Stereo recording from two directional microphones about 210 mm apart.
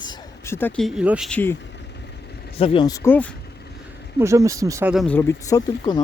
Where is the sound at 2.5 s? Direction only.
25° left (ahead or behind).